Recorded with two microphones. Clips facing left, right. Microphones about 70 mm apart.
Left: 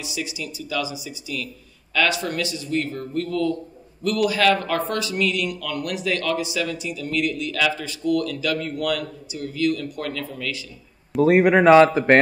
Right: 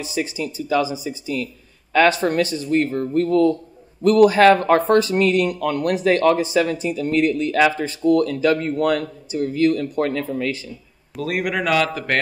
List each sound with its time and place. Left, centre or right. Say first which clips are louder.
0.0 s speech: right 6 dB; right
11.1 s a man's voice: left 8 dB; left